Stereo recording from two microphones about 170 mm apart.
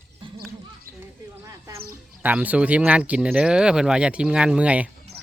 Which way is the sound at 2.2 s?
10° right (ahead or behind).